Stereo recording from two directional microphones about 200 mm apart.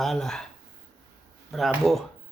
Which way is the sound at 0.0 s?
Centre (ahead or behind).